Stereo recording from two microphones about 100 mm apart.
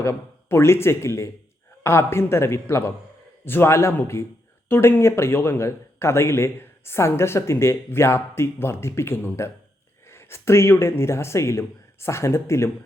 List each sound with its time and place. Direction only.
0.0 s a man's voice: 25° left (ahead or behind)